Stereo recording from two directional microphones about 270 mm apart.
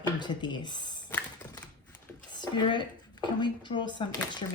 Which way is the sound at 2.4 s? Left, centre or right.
Centre.